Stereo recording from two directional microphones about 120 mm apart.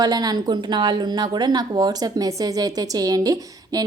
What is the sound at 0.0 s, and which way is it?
Speech, 35° right (ahead or behind).